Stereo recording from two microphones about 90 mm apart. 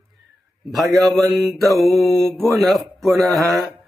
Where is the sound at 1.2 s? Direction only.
Centre (ahead or behind).